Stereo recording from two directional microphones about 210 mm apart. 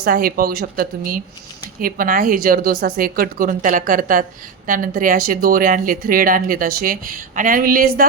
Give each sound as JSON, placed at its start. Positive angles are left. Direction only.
{"t": 0.0, "sound": "a woman's voice", "side_deg": -45}